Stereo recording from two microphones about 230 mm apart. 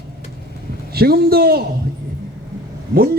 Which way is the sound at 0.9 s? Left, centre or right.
Right.